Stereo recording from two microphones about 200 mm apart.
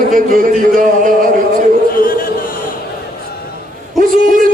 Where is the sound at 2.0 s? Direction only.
45° left (ahead or behind).